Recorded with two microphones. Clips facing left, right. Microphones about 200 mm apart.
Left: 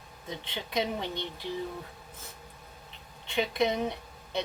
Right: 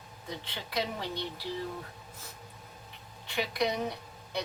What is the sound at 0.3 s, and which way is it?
A woman's voice, 20° left (ahead or behind).